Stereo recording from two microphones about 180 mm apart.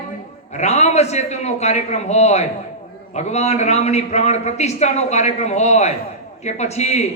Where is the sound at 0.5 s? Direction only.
40° left (ahead or behind).